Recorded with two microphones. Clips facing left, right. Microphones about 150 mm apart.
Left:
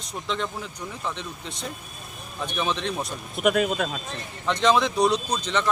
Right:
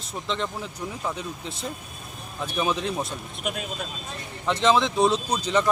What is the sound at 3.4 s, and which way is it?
Speech, 65° left (ahead or behind).